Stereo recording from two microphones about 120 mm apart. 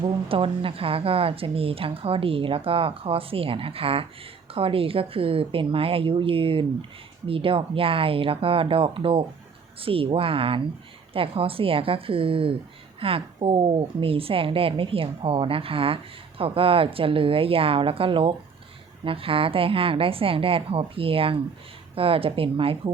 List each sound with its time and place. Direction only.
0.0 s speech: 45° right (ahead or behind)